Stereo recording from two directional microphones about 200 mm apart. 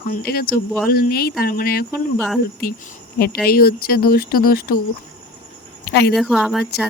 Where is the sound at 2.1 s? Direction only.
Centre (ahead or behind).